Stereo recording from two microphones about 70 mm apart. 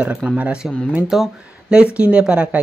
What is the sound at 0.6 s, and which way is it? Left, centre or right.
Speech, centre.